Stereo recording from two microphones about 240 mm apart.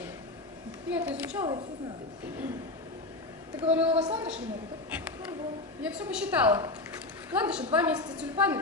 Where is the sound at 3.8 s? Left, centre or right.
Right.